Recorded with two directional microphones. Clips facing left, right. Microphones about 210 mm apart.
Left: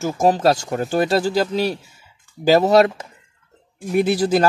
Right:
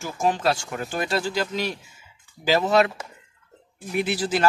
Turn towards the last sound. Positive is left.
turn(degrees=40)  # may be behind; listen again after turning